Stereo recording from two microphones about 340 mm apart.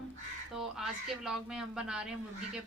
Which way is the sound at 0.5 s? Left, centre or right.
Centre.